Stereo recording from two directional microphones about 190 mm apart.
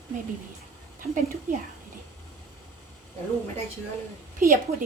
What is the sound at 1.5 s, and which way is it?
Speech, 45° right (ahead or behind).